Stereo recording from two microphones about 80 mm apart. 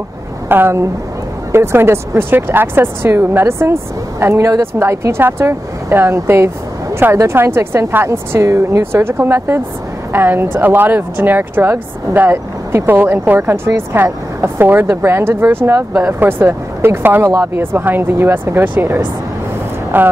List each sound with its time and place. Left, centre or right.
0.5 s speech: right